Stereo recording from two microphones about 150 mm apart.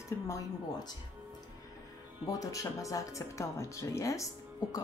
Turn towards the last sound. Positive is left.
turn(degrees=20)  # may be behind; listen again after turning